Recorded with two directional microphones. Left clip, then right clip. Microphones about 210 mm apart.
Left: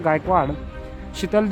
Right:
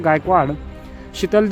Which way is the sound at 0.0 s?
15° right (ahead or behind).